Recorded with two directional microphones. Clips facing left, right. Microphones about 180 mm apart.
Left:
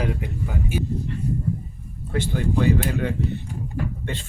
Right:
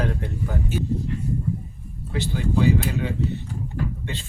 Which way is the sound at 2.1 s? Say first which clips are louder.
Left 1 dB; 50° left (ahead or behind).